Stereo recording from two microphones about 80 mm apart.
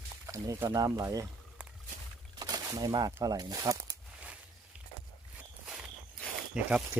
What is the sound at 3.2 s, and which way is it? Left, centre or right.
Speech, right.